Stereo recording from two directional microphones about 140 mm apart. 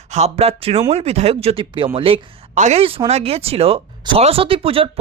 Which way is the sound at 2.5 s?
55° right (ahead or behind).